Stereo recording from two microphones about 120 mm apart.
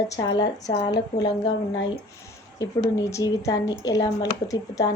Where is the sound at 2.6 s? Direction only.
30° left (ahead or behind).